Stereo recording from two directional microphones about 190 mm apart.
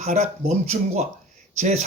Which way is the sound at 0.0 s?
40° right (ahead or behind).